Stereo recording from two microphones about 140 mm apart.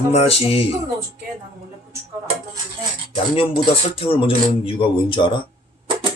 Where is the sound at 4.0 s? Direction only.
40° left (ahead or behind).